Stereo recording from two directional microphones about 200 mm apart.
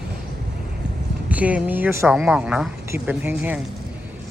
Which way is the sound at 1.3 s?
5° right (ahead or behind).